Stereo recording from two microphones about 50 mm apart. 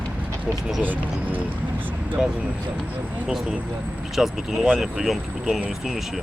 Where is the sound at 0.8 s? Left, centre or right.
Right.